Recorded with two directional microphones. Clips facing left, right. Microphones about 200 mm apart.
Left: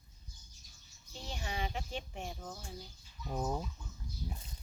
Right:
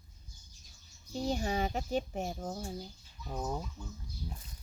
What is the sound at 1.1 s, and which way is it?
Speech, 40° right (ahead or behind).